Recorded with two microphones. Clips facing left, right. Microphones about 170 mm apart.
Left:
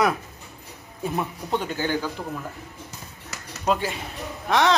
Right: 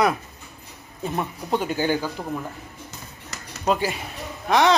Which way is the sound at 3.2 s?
Centre (ahead or behind).